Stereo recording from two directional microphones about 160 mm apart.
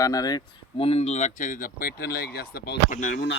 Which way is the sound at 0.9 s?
40° left (ahead or behind).